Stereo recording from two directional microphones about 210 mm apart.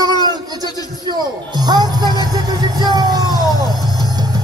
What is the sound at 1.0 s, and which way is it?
Music, 20° right (ahead or behind).